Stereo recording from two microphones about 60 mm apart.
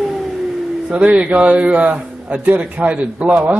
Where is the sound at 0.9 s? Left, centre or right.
Centre.